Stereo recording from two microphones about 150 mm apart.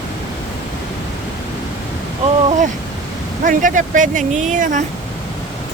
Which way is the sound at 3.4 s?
60° right (ahead or behind).